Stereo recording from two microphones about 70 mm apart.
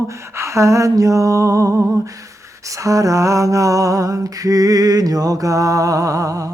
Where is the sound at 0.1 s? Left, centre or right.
Right.